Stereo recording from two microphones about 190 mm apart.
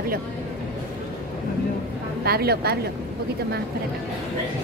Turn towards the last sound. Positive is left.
turn(degrees=-55)  # may be behind; listen again after turning